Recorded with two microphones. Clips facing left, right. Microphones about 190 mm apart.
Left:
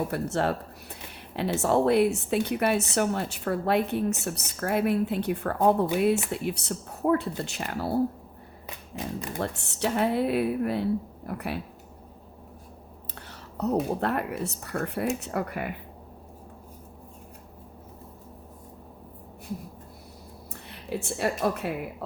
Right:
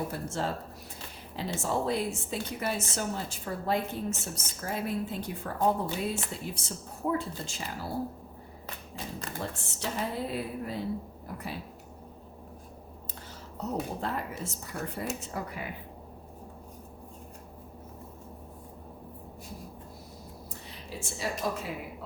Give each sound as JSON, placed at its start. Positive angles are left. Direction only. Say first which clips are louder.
{"t": 0.1, "sound": "a woman's voice", "louder": "left 6 dB", "side_deg": 65}
{"t": 9.4, "sound": "a woman's voice", "louder": "left 8 dB", "side_deg": 65}
{"t": 13.1, "sound": "a woman's voice", "louder": "left 6 dB", "side_deg": 65}
{"t": 20.5, "sound": "a woman's voice", "louder": "left 11 dB", "side_deg": 60}